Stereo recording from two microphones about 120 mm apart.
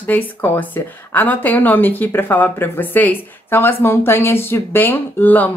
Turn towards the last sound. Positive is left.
turn(degrees=15)  # may be behind; listen again after turning